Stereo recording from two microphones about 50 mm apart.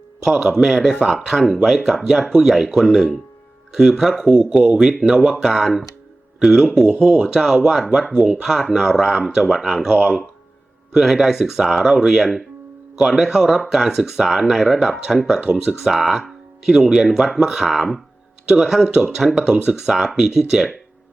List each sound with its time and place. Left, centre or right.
0.3 s speech: centre
4.9 s speech: centre
6.4 s speech: centre
6.8 s speech: right
7.3 s speech: centre
8.1 s speech: right
8.6 s speech: centre
15.5 s speech: centre
15.8 s speech: centre
18.4 s speech: centre